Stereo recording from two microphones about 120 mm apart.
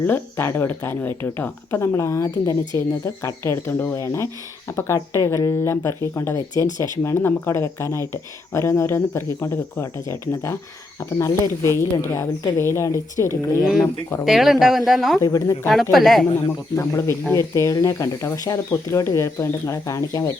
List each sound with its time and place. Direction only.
0.0 s speech: 20° left (ahead or behind)
13.6 s speech: 5° right (ahead or behind)
15.2 s speech: 25° left (ahead or behind)
15.7 s speech: centre (ahead or behind)
16.7 s speech: 20° left (ahead or behind)